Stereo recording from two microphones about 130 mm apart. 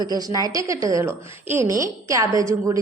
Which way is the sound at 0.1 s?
30° right (ahead or behind).